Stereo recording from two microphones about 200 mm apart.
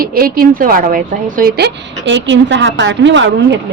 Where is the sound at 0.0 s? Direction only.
45° right (ahead or behind).